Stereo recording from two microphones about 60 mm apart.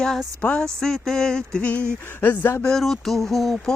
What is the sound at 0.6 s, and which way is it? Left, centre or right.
Speech, centre.